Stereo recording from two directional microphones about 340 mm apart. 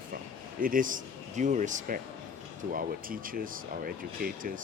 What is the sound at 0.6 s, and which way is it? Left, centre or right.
Speech, right.